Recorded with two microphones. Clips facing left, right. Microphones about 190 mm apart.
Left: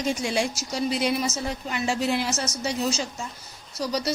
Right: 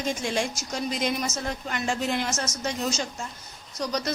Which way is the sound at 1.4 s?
5° left (ahead or behind).